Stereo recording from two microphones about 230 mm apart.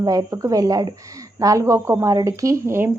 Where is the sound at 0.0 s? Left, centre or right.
Centre.